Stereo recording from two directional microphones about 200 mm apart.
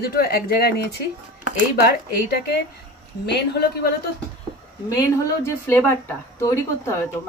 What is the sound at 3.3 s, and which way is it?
Speech, 55° left (ahead or behind).